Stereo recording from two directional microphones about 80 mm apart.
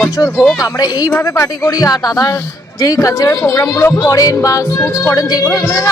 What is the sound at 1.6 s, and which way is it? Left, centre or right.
Music, left.